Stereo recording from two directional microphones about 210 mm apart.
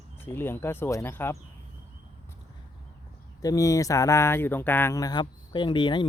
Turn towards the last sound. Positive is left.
turn(degrees=20)  # may be behind; listen again after turning